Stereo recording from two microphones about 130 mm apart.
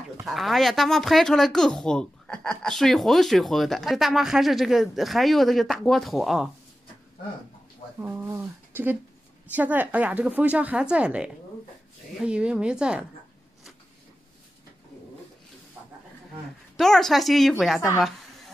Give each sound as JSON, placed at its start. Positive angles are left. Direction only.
{"t": 0.2, "sound": "speech", "side_deg": 0}
{"t": 8.0, "sound": "a woman's voice", "side_deg": -20}
{"t": 16.7, "sound": "speech", "side_deg": 5}